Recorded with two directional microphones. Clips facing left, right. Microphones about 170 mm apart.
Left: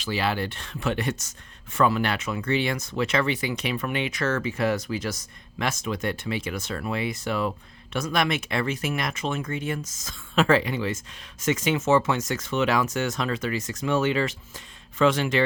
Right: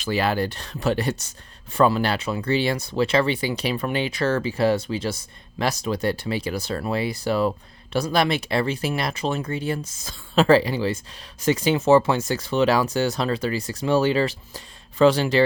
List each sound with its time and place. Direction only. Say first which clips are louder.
0.0 s speech: right 4 dB; 45° right (ahead or behind)